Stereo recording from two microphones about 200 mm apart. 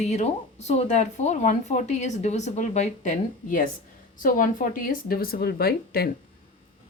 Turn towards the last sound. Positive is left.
turn(degrees=50)  # may be behind; listen again after turning